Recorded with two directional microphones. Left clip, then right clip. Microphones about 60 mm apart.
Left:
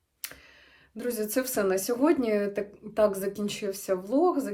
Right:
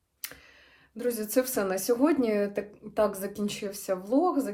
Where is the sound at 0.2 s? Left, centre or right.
Left.